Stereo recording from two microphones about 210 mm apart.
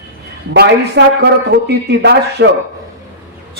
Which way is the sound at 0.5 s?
50° right (ahead or behind).